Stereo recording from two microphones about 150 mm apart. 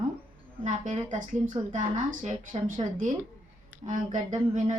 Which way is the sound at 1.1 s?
55° right (ahead or behind).